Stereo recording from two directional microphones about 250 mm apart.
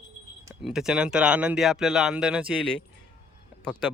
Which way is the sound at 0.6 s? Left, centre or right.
Centre.